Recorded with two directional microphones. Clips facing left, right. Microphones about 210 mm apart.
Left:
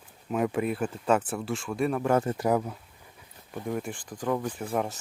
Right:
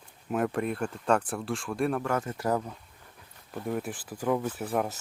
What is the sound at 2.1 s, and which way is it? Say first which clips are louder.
Speech: left 6 dB; 30° left (ahead or behind).